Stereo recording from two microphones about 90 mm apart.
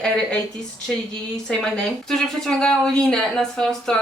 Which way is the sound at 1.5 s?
5° left (ahead or behind).